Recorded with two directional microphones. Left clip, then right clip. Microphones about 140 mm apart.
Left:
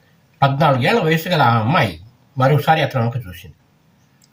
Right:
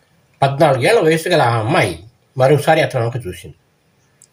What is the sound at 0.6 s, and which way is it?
Speech, 50° right (ahead or behind).